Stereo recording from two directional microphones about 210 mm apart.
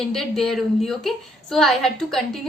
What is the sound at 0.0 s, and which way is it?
A woman's voice, centre (ahead or behind).